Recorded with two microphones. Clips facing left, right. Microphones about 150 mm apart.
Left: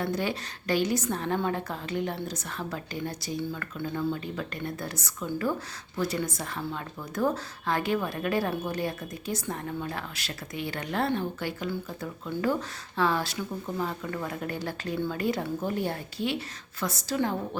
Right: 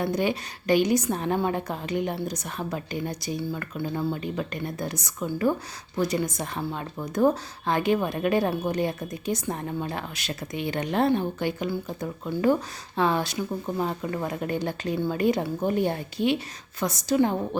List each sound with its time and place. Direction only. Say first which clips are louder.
0.0 s a woman's voice: right 4 dB; 15° right (ahead or behind)